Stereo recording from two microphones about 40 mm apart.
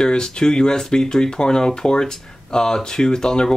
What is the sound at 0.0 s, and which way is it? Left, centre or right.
Speech, centre.